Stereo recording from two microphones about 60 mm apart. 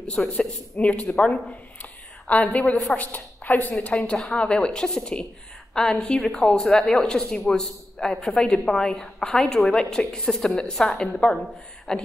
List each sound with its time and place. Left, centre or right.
0.2 s a woman's voice: centre
4.0 s a woman's voice: centre